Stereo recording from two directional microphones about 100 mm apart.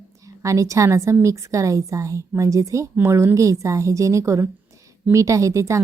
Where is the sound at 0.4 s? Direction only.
30° right (ahead or behind).